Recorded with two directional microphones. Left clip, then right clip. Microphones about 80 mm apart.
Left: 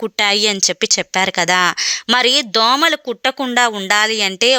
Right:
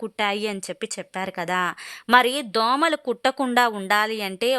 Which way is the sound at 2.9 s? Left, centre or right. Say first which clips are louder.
Left 5 dB; centre.